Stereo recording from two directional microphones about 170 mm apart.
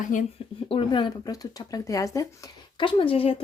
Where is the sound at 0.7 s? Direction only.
30° left (ahead or behind).